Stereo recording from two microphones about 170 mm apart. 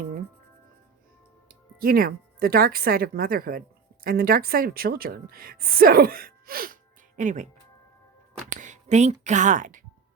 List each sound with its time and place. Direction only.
1.8 s a woman's voice: 60° right (ahead or behind)
7.2 s speech: 45° right (ahead or behind)